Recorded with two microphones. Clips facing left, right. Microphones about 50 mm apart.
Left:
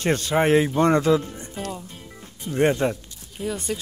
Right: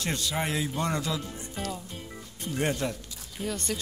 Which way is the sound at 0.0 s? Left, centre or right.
Left.